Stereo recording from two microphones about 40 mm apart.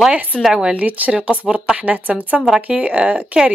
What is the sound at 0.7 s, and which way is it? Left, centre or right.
Speech, right.